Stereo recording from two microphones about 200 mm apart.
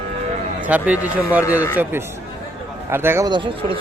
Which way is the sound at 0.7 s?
5° right (ahead or behind).